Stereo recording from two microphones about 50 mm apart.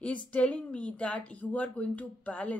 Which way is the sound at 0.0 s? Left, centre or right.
Left.